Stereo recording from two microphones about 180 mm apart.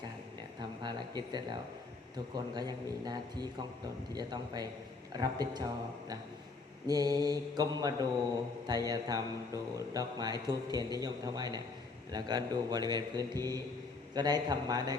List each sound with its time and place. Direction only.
0.6 s a man's voice: 25° right (ahead or behind)